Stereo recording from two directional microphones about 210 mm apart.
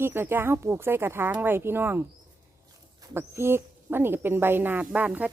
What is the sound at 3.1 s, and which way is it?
A woman's voice, 10° right (ahead or behind).